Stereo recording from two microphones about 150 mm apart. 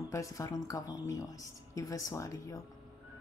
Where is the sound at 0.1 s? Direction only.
20° left (ahead or behind).